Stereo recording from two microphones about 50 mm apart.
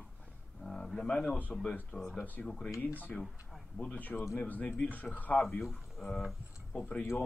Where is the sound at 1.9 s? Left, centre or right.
Left.